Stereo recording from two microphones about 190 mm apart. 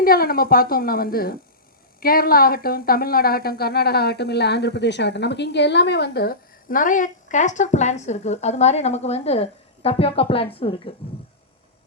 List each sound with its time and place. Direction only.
0.0 s a woman's voice: 50° left (ahead or behind); by 10.9 s 30° left (ahead or behind)